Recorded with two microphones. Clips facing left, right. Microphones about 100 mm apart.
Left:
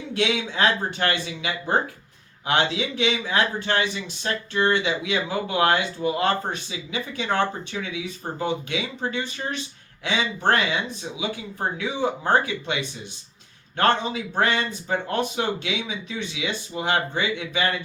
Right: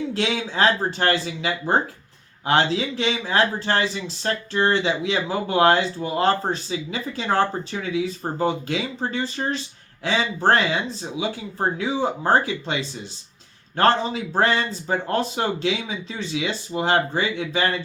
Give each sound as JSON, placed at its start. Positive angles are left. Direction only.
{"t": 0.1, "sound": "speech", "side_deg": -35}
{"t": 11.8, "sound": "speech", "side_deg": -35}